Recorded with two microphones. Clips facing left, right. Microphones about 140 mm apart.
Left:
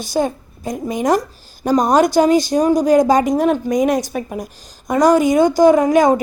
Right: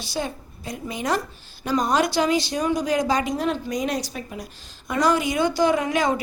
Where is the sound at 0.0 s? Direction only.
45° left (ahead or behind).